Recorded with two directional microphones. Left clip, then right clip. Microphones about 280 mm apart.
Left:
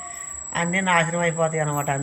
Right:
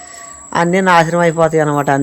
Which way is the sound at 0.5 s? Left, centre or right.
Centre.